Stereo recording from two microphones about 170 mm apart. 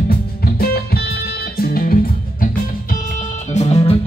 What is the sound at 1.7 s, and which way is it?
Music, 55° left (ahead or behind).